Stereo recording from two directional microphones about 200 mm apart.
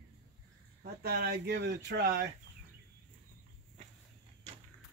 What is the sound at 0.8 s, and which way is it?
Speech, 50° right (ahead or behind).